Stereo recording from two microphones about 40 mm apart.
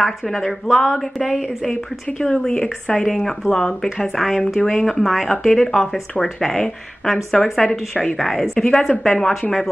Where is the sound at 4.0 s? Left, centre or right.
Centre.